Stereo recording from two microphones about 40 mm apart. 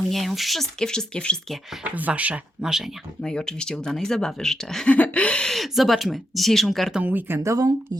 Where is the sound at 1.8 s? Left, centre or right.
Right.